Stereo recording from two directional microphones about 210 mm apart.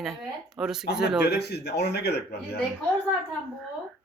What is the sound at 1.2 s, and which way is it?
A man's voice, 50° left (ahead or behind).